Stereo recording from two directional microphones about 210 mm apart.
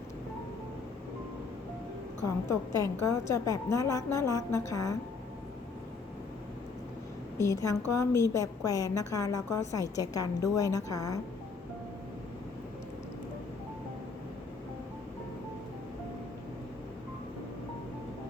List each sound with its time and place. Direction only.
2.5 s a woman's voice: 15° left (ahead or behind)
7.3 s a woman's voice: 15° left (ahead or behind)